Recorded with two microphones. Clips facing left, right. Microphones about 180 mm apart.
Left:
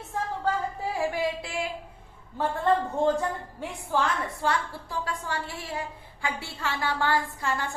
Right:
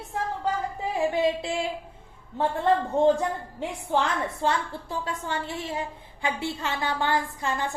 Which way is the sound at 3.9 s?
20° right (ahead or behind).